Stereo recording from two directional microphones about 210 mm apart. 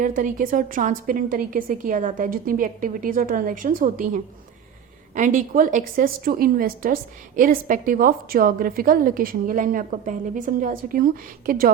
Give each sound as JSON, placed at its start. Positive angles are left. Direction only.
{"t": 0.0, "sound": "a woman's voice", "side_deg": -40}